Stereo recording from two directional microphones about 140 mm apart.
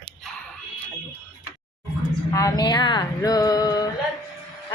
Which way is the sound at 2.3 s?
25° left (ahead or behind).